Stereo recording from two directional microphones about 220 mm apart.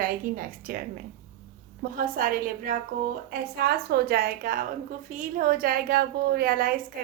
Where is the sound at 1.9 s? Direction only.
40° right (ahead or behind).